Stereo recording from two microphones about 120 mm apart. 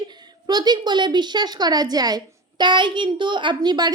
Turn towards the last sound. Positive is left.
turn(degrees=-35)  # may be behind; listen again after turning